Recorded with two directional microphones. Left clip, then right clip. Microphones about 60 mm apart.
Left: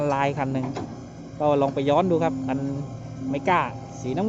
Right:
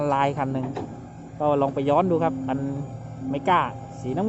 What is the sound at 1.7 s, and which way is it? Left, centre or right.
A woman's voice, centre.